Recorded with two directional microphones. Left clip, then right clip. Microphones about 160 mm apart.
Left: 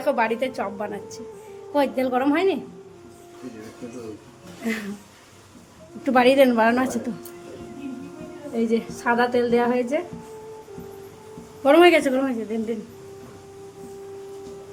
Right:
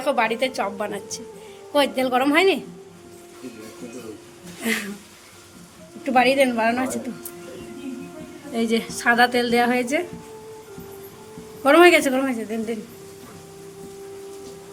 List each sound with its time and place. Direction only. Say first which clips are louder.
0.0 s a woman's voice: right 1 dB; 10° left (ahead or behind)
4.6 s a woman's voice: right 4 dB; 5° left (ahead or behind)
6.0 s a woman's voice: left 1 dB; 30° left (ahead or behind)
8.5 s a woman's voice: right 1 dB; centre (ahead or behind)
11.6 s a woman's voice: right 1 dB; 10° left (ahead or behind)